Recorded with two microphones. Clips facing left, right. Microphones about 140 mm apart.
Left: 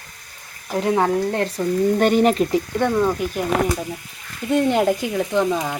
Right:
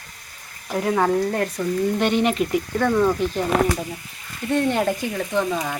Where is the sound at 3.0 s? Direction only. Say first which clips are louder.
Right 1 dB; 10° left (ahead or behind).